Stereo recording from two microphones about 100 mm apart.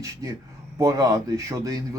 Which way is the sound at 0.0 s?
35° right (ahead or behind).